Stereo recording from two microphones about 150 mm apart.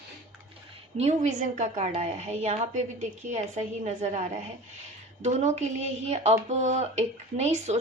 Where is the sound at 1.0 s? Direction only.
50° right (ahead or behind).